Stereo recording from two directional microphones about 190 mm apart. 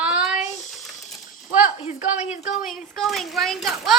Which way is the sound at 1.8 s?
35° left (ahead or behind).